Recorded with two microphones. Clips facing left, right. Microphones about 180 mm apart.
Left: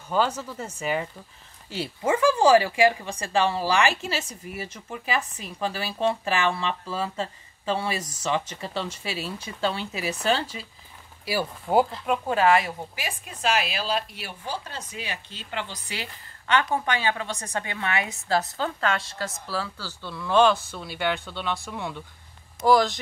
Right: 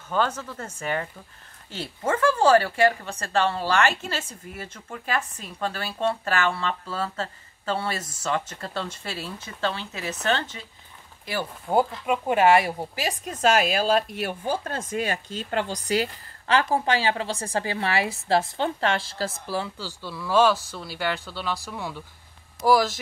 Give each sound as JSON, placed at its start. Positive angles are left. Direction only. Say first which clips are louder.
{"t": 0.1, "sound": "speech", "louder": "left 1 dB", "side_deg": 10}
{"t": 12.1, "sound": "a woman's voice", "louder": "right 5 dB", "side_deg": -20}
{"t": 20.0, "sound": "speech", "louder": "left 1 dB", "side_deg": -5}